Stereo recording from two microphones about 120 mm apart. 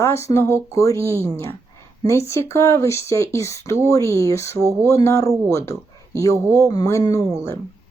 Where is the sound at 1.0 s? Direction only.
20° right (ahead or behind).